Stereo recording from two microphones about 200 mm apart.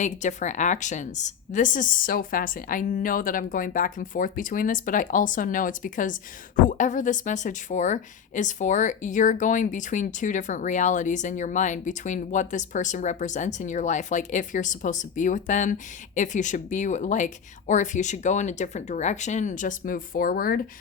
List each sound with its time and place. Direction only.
0.0 s a woman's voice: 40° left (ahead or behind)